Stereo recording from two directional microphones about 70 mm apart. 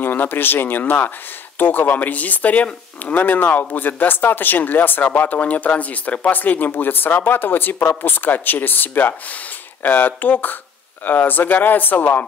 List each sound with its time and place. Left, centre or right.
0.0 s speech: left